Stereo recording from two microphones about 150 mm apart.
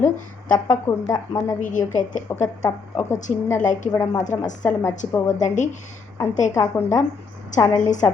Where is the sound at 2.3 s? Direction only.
15° left (ahead or behind).